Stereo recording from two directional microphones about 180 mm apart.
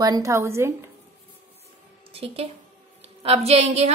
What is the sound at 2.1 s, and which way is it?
A woman's voice, 30° right (ahead or behind).